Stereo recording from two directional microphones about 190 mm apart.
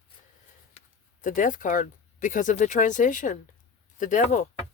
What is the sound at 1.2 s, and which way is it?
Speech, 45° left (ahead or behind).